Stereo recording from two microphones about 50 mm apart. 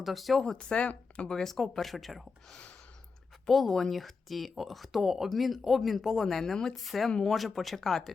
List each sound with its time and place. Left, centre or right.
0.0 s speech: centre
0.4 s speech: centre
1.3 s speech: centre
6.7 s speech: centre
7.1 s speech: centre
7.3 s speech: centre